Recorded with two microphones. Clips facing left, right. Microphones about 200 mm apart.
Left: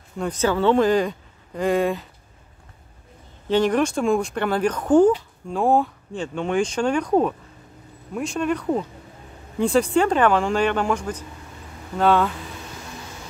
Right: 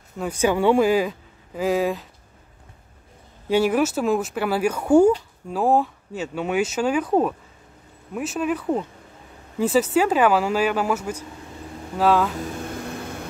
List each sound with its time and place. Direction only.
0.2 s speech: 10° right (ahead or behind)
3.4 s speech: 10° right (ahead or behind)
12.4 s vehicle: 55° right (ahead or behind)